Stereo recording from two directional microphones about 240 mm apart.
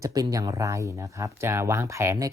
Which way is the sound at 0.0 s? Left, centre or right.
Centre.